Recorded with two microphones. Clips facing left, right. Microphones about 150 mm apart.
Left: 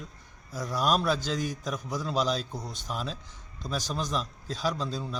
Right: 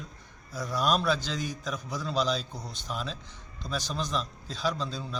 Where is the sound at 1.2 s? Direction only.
45° left (ahead or behind).